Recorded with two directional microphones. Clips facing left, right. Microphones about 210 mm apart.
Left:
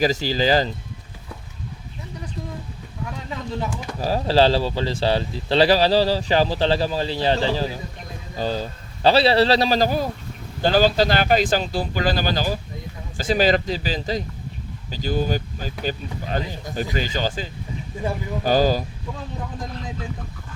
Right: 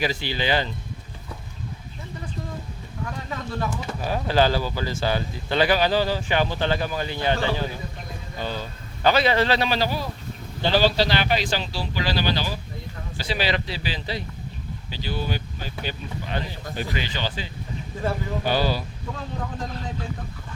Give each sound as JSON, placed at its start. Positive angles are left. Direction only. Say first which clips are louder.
{"t": 0.0, "sound": "speech", "louder": "left 6 dB", "side_deg": 40}
{"t": 3.2, "sound": "speech", "louder": "left 2 dB", "side_deg": 15}
{"t": 4.0, "sound": "speech", "louder": "left 4 dB", "side_deg": 30}